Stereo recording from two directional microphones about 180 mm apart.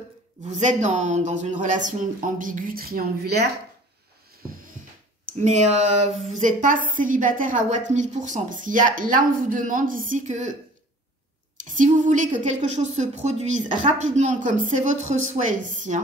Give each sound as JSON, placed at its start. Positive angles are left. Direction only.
{"t": 0.5, "sound": "a woman's voice", "side_deg": -40}
{"t": 5.3, "sound": "a woman's voice", "side_deg": -40}
{"t": 11.7, "sound": "a woman's voice", "side_deg": -45}